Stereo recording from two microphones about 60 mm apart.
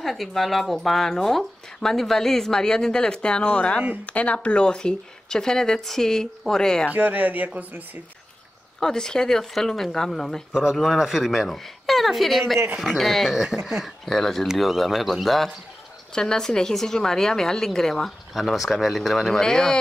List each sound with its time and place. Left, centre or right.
0.0 s a woman's voice: centre
6.9 s speech: right
8.7 s a woman's voice: centre
10.5 s a woman's voice: centre